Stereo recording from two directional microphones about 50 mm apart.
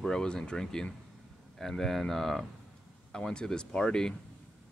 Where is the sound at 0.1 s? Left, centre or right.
Centre.